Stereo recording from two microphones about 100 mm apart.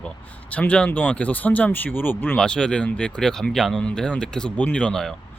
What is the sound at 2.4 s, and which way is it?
Speech, 10° left (ahead or behind).